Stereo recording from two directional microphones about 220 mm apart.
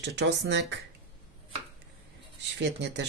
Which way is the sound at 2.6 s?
50° right (ahead or behind).